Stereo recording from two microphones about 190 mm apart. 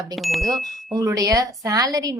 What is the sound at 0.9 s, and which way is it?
A woman's voice, 15° right (ahead or behind).